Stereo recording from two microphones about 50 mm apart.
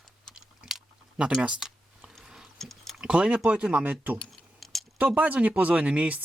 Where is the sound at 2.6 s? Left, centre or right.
Centre.